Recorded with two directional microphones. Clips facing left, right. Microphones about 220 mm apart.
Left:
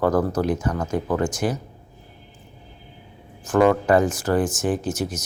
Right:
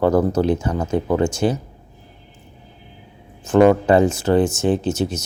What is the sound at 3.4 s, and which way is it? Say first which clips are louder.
Speech: right 4 dB; 25° right (ahead or behind).